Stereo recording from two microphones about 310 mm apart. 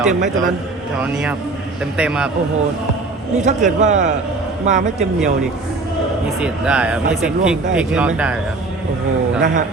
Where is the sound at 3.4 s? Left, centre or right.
Right.